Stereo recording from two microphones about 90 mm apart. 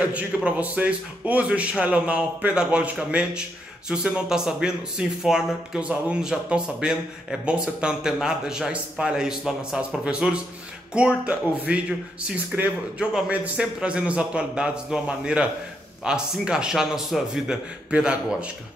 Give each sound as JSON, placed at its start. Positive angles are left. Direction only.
{"t": 0.0, "sound": "speech", "side_deg": -15}